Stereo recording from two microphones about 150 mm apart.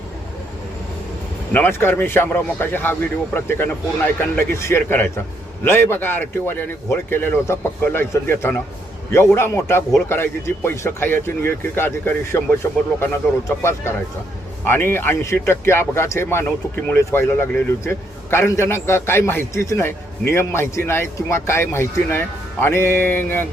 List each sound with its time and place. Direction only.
1.5 s speech: 15° left (ahead or behind)